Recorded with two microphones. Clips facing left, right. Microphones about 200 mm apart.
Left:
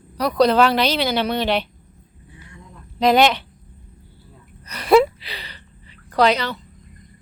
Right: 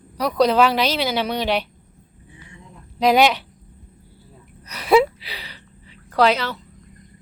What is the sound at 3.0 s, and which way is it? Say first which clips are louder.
Speech: even; 5° right (ahead or behind).